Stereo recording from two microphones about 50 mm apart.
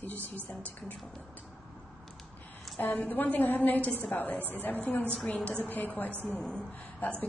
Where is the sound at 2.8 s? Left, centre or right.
Left.